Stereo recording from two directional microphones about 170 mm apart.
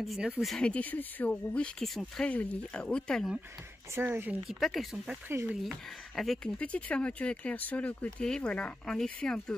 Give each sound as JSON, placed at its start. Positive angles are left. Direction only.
{"t": 0.0, "sound": "speech", "side_deg": 0}
{"t": 3.9, "sound": "speech", "side_deg": -10}
{"t": 4.5, "sound": "speech", "side_deg": 0}